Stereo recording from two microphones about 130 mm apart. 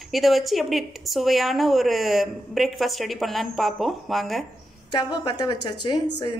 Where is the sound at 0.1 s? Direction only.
Centre (ahead or behind).